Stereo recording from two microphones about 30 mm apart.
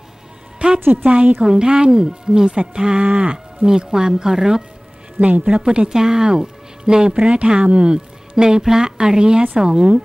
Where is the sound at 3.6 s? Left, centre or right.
Right.